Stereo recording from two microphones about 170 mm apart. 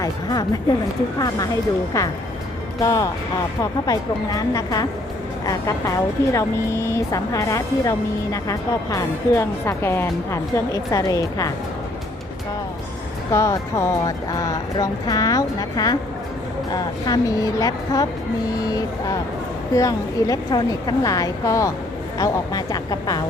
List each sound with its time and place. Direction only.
0.0 s speech: 20° left (ahead or behind)
1.9 s speech: 20° left (ahead or behind)
13.3 s speech: 15° left (ahead or behind)